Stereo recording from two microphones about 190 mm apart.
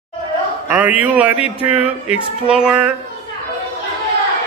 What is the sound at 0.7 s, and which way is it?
A man's voice, 10° right (ahead or behind).